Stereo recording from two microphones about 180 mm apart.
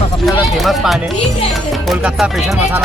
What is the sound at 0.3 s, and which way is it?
Speech, centre (ahead or behind).